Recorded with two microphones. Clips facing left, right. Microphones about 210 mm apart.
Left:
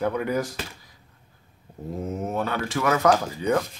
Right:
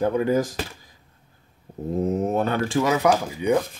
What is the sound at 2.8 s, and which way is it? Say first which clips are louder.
Speech: left 2 dB; 15° right (ahead or behind).